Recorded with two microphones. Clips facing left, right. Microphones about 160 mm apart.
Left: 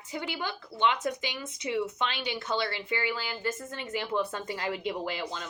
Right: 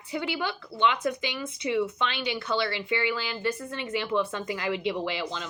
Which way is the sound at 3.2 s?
90° right.